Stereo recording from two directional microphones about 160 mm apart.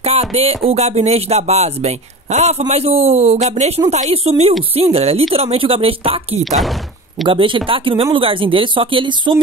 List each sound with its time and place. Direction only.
0.0 s a sound: 40° right (ahead or behind)
0.7 s speech: 40° right (ahead or behind)
6.4 s speech: centre (ahead or behind)
7.2 s speech: 30° right (ahead or behind)